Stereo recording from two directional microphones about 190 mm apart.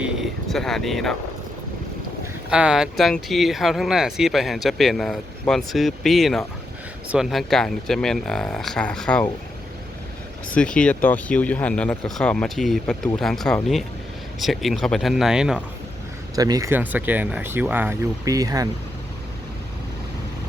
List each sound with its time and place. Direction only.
0.0 s a sound: centre (ahead or behind)
2.5 s speech: 5° right (ahead or behind)
10.5 s speech: 5° left (ahead or behind)
16.3 s speech: 20° right (ahead or behind)